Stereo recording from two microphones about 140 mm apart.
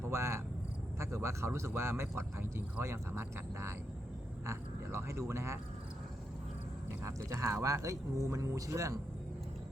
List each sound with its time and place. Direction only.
0.0 s vehicle: 20° right (ahead or behind)
0.9 s speech: 20° right (ahead or behind)
7.0 s speech: 20° right (ahead or behind)